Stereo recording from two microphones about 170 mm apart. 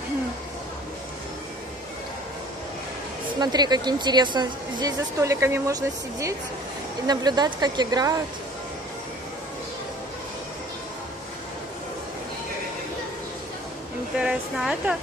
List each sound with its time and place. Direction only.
3.3 s speech: 25° right (ahead or behind)
14.1 s speech: 5° right (ahead or behind)